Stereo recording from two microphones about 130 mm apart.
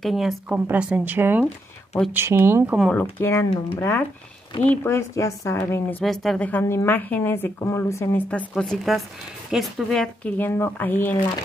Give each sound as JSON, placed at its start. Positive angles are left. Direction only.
{"t": 0.0, "sound": "speech", "side_deg": 0}
{"t": 2.9, "sound": "a woman's voice", "side_deg": 15}
{"t": 6.0, "sound": "a woman's voice", "side_deg": 0}